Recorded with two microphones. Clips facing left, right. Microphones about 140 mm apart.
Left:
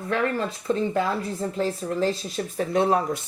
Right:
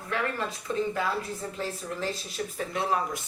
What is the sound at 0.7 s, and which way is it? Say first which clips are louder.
Speech: left 5 dB; 35° left (ahead or behind).